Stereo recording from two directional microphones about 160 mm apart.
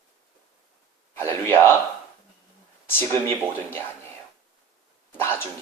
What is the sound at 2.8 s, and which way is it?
A man's voice, 15° left (ahead or behind).